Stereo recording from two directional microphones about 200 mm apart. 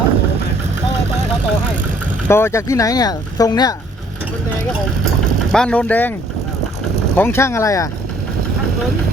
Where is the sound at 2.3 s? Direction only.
10° left (ahead or behind).